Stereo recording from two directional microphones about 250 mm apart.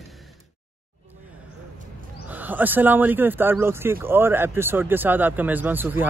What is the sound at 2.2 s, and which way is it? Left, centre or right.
Speech, centre.